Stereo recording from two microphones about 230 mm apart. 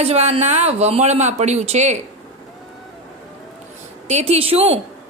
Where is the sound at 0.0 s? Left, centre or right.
Right.